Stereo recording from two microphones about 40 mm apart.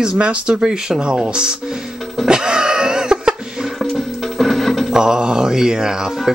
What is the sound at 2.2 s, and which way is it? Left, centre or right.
Cough, right.